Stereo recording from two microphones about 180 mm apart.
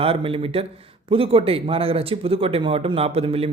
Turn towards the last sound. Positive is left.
turn(degrees=-35)  # may be behind; listen again after turning